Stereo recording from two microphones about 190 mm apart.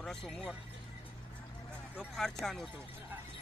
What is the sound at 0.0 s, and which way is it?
Speech, centre (ahead or behind).